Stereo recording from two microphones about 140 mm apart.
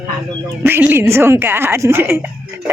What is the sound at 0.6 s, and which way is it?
A woman's voice, 15° right (ahead or behind).